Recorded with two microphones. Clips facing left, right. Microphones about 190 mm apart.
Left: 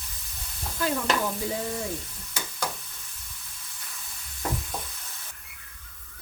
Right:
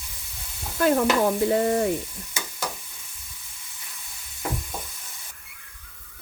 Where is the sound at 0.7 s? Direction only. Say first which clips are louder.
Right 7 dB; 60° right (ahead or behind).